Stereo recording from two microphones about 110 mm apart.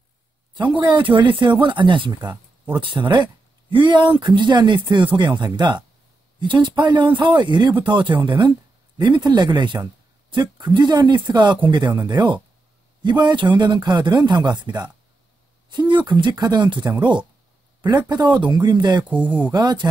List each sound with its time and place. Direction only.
0.6 s speech: 45° right (ahead or behind)
19.2 s speech: 15° right (ahead or behind)
19.5 s speech: 40° right (ahead or behind)